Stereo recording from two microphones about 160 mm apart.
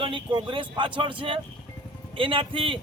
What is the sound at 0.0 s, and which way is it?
Speech, 30° right (ahead or behind).